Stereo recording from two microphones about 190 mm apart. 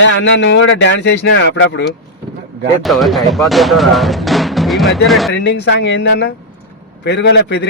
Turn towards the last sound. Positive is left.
turn(degrees=65)  # may be behind; listen again after turning